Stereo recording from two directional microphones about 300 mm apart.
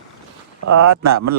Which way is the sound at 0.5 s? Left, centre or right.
Right.